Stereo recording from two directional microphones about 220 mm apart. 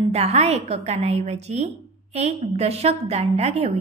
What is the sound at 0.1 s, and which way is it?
A woman's voice, 30° right (ahead or behind).